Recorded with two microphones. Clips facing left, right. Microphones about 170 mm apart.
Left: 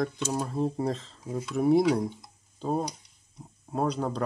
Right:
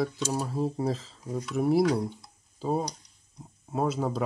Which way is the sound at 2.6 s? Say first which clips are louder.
Even; 5° right (ahead or behind).